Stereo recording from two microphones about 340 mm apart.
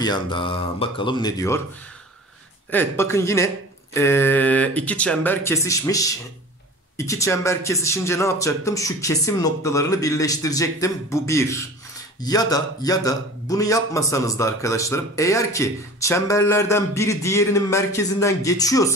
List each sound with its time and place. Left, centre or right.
0.0 s speech: centre
2.7 s speech: centre